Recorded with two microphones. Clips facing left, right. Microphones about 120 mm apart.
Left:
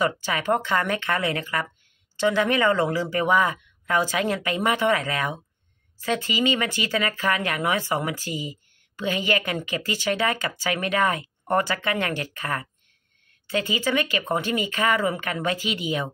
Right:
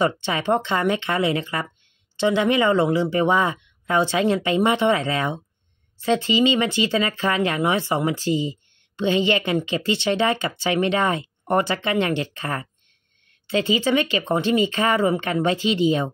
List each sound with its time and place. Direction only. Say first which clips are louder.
0.0 s speech: right 3 dB; 25° right (ahead or behind)